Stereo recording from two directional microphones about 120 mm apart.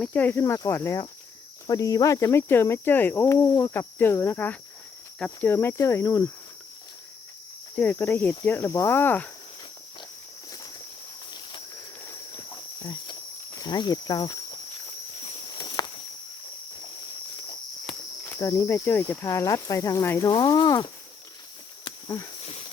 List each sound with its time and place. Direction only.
0.0 s speech: 15° left (ahead or behind)
7.8 s speech: 15° left (ahead or behind)
12.0 s walk: 25° left (ahead or behind)
13.6 s speech: 35° left (ahead or behind)
15.4 s walk: 40° left (ahead or behind)
18.3 s speech: 30° left (ahead or behind)
19.2 s speech: 30° left (ahead or behind)
20.3 s speech: 35° left (ahead or behind)
22.0 s a sound: 25° left (ahead or behind)
22.4 s a sound: 60° left (ahead or behind)